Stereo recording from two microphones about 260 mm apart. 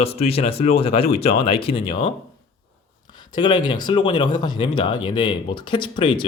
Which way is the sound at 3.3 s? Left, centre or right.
Centre.